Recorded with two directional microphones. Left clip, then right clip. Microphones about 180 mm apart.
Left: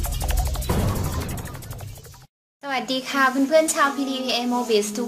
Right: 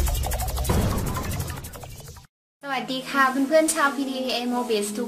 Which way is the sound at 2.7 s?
30° left (ahead or behind).